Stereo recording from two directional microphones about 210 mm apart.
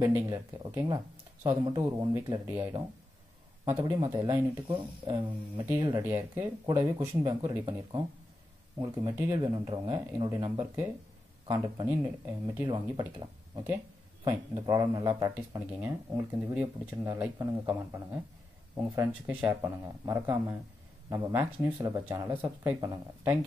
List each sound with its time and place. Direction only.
0.0 s speech: 15° right (ahead or behind)
12.6 s speech: 20° right (ahead or behind)
14.2 s speech: 15° right (ahead or behind)
18.8 s speech: 10° right (ahead or behind)